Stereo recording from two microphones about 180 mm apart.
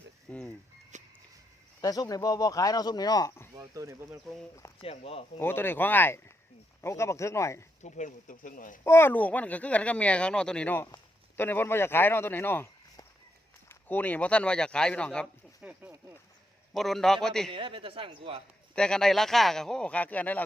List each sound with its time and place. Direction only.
0.3 s a sound: 5° left (ahead or behind)
0.9 s music: 40° right (ahead or behind)
1.8 s speech: 20° left (ahead or behind)
3.6 s speech: 15° right (ahead or behind)
4.8 s speech: 30° left (ahead or behind)
5.4 s speech: 10° left (ahead or behind)
7.8 s speech: 40° left (ahead or behind)
8.8 s speech: 15° left (ahead or behind)
10.8 s a sound: 20° left (ahead or behind)
11.4 s speech: 10° left (ahead or behind)
15.6 s speech: 10° right (ahead or behind)
16.7 s speech: centre (ahead or behind)
17.5 s speech: 30° right (ahead or behind)
18.7 s speech: 5° left (ahead or behind)